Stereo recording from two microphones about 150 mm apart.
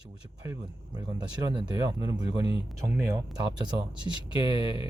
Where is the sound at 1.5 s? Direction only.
30° right (ahead or behind).